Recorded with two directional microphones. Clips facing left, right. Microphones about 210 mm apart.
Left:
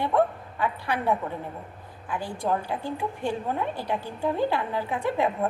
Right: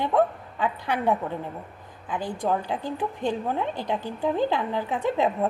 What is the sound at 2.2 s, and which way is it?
A woman's voice, 15° right (ahead or behind).